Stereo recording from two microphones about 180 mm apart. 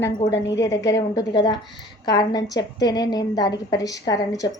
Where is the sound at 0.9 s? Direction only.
20° left (ahead or behind).